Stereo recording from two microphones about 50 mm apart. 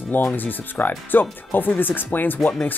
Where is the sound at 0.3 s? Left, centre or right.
Left.